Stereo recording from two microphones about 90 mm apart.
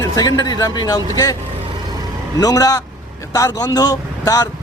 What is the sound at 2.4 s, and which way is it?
A man's voice, 40° left (ahead or behind).